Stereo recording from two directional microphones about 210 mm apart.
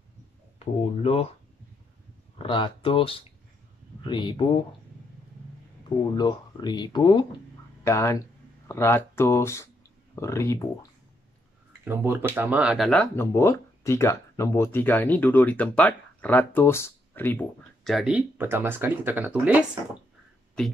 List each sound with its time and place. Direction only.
0.6 s speech: 30° left (ahead or behind)
2.3 s speech: 25° left (ahead or behind)
6.1 s speech: 20° left (ahead or behind)
11.8 s speech: 10° right (ahead or behind)